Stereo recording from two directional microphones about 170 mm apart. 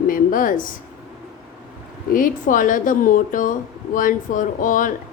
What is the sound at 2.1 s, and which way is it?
Speech, 55° left (ahead or behind).